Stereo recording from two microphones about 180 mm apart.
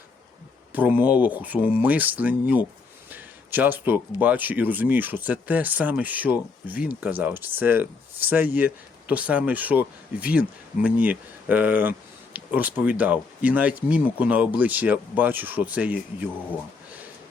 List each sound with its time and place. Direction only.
0.7 s speech: 10° right (ahead or behind)